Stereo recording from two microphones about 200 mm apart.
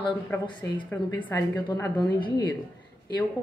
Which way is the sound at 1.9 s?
20° left (ahead or behind).